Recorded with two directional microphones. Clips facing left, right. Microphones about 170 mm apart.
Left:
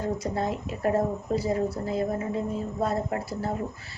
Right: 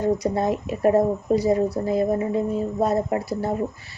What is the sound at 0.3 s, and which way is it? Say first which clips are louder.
Speech: right 6 dB; 15° right (ahead or behind).